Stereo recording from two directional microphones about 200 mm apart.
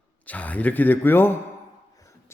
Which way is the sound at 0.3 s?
5° left (ahead or behind).